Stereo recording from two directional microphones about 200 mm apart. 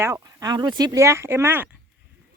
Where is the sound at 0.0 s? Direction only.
15° right (ahead or behind).